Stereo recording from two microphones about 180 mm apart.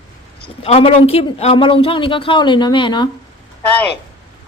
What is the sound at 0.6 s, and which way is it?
A man's voice, 30° left (ahead or behind).